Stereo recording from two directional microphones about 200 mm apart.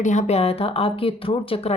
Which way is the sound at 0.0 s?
35° left (ahead or behind).